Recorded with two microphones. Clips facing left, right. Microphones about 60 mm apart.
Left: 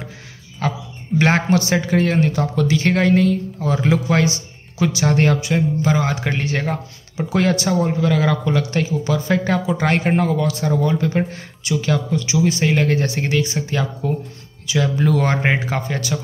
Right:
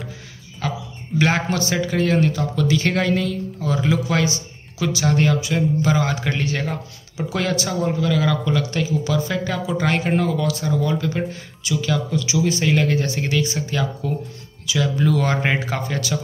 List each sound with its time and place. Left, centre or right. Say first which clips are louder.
0.6 s a sound: left 3 dB; left
1.5 s speech: left 4 dB; left
2.7 s speech: left 4 dB; left
5.1 s speech: left 1 dB; left
5.5 s speech: left 1 dB; left
13.6 s speech: left 2 dB; left